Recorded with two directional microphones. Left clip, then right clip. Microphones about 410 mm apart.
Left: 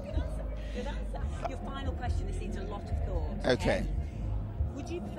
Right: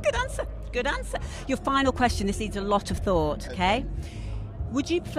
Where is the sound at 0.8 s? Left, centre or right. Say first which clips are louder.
Right 13 dB; right.